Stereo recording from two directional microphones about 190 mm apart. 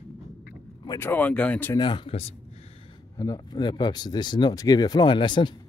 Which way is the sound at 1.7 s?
25° left (ahead or behind).